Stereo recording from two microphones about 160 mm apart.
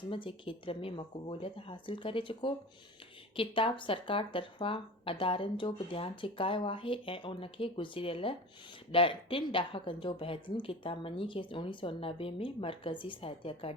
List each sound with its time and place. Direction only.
0.1 s speech: 35° left (ahead or behind)